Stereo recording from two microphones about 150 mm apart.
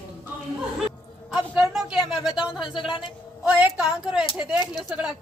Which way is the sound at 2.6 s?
30° left (ahead or behind).